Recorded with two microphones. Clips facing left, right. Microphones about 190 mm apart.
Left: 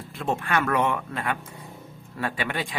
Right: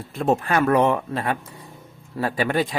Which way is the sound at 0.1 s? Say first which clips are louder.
Right 6 dB; 40° right (ahead or behind).